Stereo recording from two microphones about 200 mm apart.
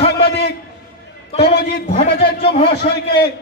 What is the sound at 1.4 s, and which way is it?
Speech, 55° left (ahead or behind).